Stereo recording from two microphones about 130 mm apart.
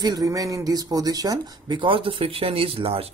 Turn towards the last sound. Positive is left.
turn(degrees=-45)  # may be behind; listen again after turning